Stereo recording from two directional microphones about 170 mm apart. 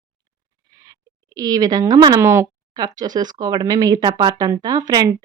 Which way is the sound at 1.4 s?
20° right (ahead or behind).